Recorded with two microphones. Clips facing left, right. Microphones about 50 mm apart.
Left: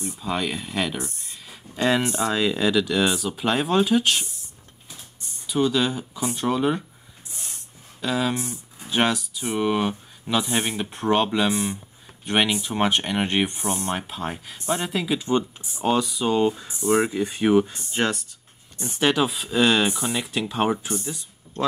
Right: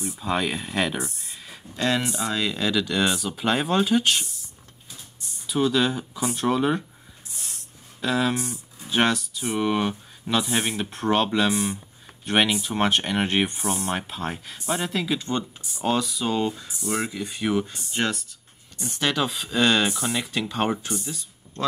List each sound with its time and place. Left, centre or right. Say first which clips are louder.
0.2 s speech: right 1 dB; centre
1.8 s speech: left 3 dB; centre
5.5 s speech: even; centre
8.0 s speech: right 1 dB; centre
16.6 s speech: left 7 dB; left; by 20.9 s centre
21.1 s a sound: left 2 dB; centre